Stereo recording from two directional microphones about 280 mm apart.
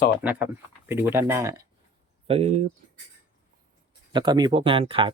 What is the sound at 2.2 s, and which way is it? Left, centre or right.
Speech, right.